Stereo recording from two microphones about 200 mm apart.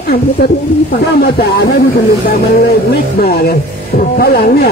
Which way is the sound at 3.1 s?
50° left (ahead or behind).